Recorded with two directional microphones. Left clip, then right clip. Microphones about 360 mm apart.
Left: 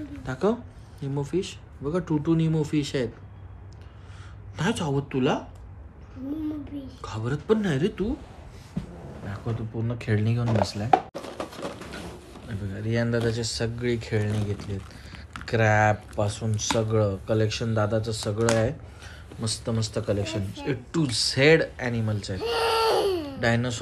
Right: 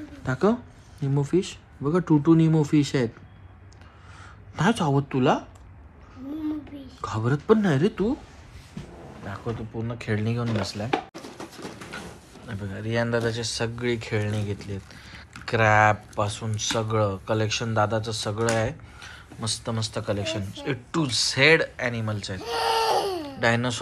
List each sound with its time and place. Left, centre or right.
0.2 s speech: centre
4.6 s speech: centre
7.0 s speech: centre
9.6 s speech: centre
10.9 s chopping: centre
12.4 s speech: centre
23.0 s a sound: centre
23.4 s speech: centre